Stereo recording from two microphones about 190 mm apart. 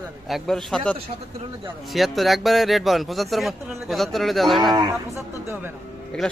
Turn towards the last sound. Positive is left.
turn(degrees=5)  # may be behind; listen again after turning